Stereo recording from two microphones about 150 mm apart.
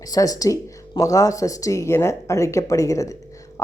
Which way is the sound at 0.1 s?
25° left (ahead or behind).